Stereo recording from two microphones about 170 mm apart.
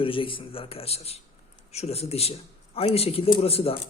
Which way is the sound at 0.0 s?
30° left (ahead or behind).